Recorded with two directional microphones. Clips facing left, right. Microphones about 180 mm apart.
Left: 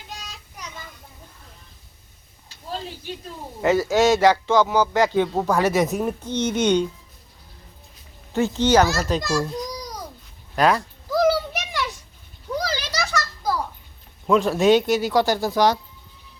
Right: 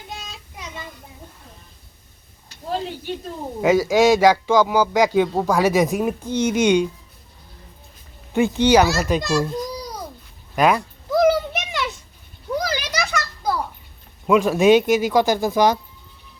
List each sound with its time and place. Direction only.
3.6 s speech: 10° right (ahead or behind)
8.3 s speech: 15° right (ahead or behind)
10.5 s a sound: 10° right (ahead or behind)
14.3 s speech: 10° right (ahead or behind)